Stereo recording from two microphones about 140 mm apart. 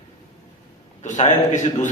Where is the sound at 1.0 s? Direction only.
60° left (ahead or behind).